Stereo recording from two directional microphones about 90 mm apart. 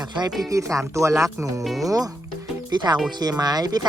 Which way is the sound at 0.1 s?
50° right (ahead or behind).